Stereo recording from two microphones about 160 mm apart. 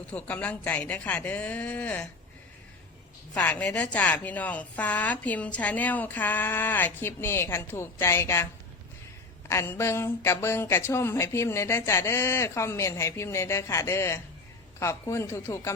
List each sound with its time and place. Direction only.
0.1 s a woman's voice: 10° left (ahead or behind)
3.3 s a woman's voice: 10° left (ahead or behind)
9.5 s a woman's voice: 15° left (ahead or behind)